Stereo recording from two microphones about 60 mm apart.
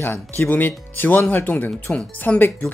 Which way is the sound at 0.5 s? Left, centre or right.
Left.